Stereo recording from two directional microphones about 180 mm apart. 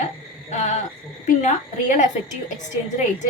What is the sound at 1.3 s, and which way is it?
A woman's voice, 40° left (ahead or behind).